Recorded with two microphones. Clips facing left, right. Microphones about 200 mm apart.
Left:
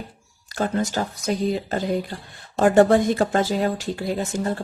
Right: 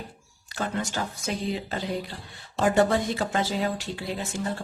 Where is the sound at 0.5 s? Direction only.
40° left (ahead or behind).